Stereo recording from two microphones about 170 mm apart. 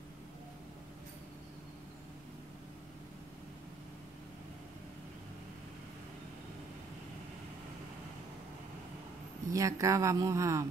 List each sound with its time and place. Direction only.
9.5 s a woman's voice: 20° right (ahead or behind)